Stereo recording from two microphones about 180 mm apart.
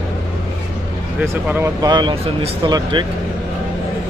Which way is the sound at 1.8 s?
25° right (ahead or behind).